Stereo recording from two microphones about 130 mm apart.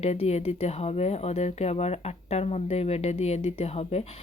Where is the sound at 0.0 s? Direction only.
55° left (ahead or behind).